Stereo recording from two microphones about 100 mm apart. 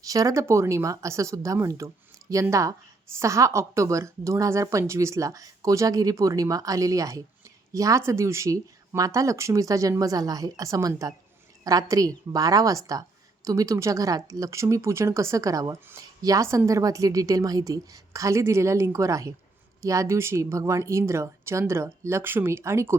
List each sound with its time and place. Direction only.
0.0 s a woman's voice: 35° right (ahead or behind)